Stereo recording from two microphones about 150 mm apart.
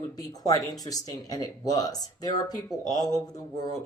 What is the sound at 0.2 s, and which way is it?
Speech, 25° left (ahead or behind).